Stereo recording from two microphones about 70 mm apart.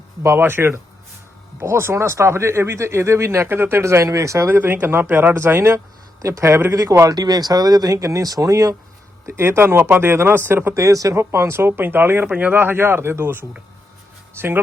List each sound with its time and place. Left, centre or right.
0.2 s speech: right
4.4 s speech: right
7.0 s speech: right
7.9 s speech: right
9.2 s speech: right
10.8 s speech: right